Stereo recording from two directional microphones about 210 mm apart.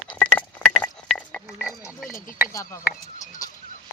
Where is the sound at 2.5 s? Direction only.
15° left (ahead or behind).